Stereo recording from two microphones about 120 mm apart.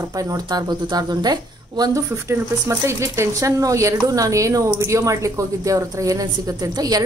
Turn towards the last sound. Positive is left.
turn(degrees=-30)  # may be behind; listen again after turning